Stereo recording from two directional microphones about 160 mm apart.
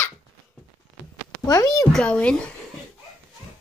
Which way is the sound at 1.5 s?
20° left (ahead or behind).